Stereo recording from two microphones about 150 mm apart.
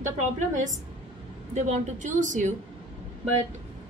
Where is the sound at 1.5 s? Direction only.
50° right (ahead or behind).